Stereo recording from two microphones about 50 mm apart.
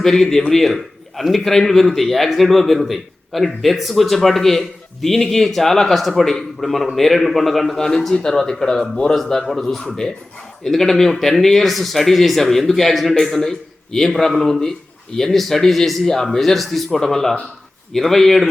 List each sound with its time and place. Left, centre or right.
0.0 s a man's voice: centre